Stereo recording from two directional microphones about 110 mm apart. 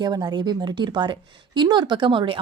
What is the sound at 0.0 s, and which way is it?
A woman's voice, 40° right (ahead or behind).